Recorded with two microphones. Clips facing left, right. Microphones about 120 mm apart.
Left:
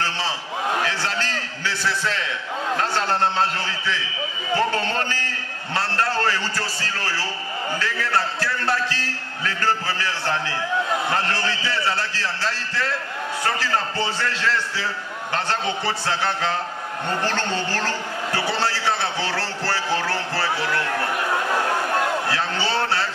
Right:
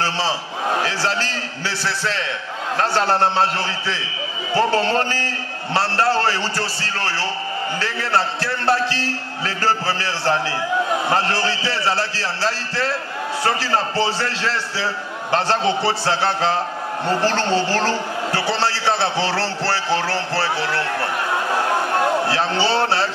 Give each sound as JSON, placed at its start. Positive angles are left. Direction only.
{"t": 0.8, "sound": "a man's voice", "side_deg": -30}
{"t": 21.9, "sound": "a man's voice", "side_deg": -30}